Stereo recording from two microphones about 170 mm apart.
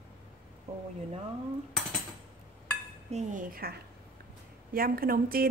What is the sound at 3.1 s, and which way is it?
A woman's voice, 50° right (ahead or behind).